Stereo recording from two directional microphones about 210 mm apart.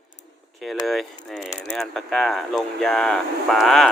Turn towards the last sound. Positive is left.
turn(degrees=0)  # may be behind; listen again after turning